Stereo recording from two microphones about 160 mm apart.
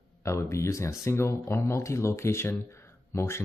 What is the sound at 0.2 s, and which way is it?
Speech, 20° left (ahead or behind).